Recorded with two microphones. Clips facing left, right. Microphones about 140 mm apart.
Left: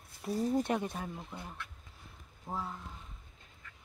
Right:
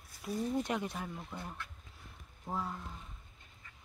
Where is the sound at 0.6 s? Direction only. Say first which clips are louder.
Left 3 dB; 25° left (ahead or behind).